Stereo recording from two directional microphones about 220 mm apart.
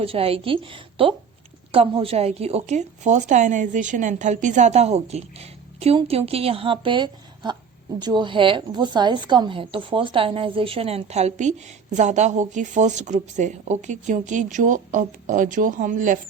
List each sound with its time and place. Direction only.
0.0 s a woman's voice: 25° right (ahead or behind)